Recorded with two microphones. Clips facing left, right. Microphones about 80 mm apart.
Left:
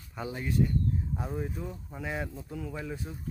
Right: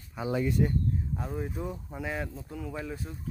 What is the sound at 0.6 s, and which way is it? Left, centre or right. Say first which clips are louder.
Speech: left 3 dB; right.